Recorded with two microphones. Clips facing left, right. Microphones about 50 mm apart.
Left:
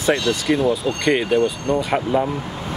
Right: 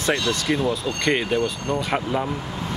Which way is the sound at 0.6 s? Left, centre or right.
Left.